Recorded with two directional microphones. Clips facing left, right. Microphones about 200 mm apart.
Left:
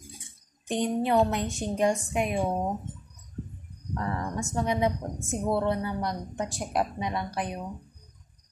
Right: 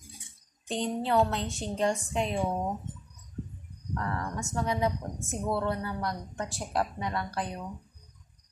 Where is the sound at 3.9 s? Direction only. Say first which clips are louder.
Left 3 dB; 20° left (ahead or behind).